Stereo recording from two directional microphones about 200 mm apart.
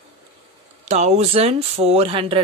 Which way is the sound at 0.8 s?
35° right (ahead or behind).